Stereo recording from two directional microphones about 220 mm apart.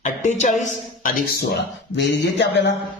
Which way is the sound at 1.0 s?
45° left (ahead or behind).